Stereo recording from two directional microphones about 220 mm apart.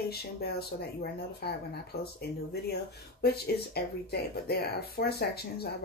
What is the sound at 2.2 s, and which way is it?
Speech, 45° left (ahead or behind).